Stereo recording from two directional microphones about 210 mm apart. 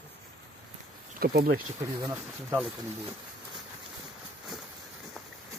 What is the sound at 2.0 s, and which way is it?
Speech, 10° right (ahead or behind).